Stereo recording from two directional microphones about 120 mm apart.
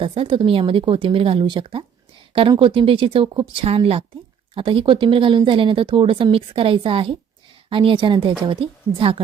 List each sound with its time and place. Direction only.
0.0 s speech: 50° right (ahead or behind)